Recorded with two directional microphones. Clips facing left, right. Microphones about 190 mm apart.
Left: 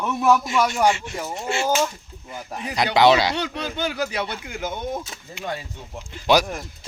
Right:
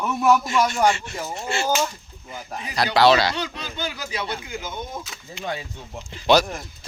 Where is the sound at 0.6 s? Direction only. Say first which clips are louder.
Even; 15° left (ahead or behind).